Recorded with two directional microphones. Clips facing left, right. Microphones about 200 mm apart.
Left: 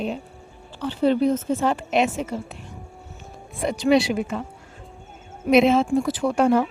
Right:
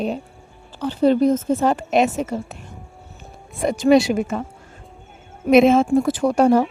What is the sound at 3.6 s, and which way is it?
Speech, 45° right (ahead or behind).